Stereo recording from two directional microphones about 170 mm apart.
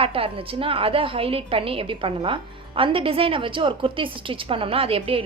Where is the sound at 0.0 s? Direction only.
35° right (ahead or behind).